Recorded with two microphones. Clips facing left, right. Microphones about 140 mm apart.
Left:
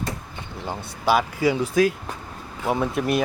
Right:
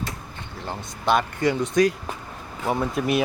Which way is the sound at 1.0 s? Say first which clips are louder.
Left 1 dB; 5° left (ahead or behind).